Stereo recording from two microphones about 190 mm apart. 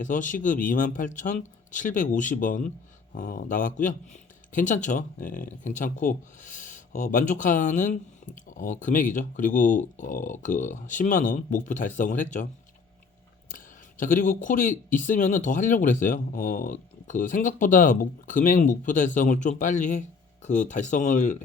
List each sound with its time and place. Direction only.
0.0 s speech: 45° left (ahead or behind)
14.0 s speech: 45° left (ahead or behind)